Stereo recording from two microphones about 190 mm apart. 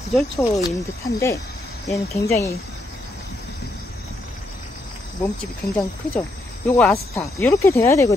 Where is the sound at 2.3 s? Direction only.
15° left (ahead or behind).